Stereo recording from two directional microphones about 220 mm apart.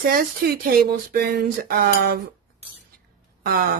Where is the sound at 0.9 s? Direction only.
45° right (ahead or behind).